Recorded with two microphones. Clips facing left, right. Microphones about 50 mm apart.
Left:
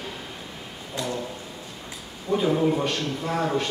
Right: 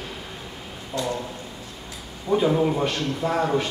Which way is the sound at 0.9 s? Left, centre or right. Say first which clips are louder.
Right 3 dB; left.